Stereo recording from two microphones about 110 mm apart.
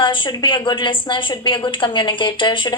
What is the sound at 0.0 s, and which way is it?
A woman's voice, 45° left (ahead or behind).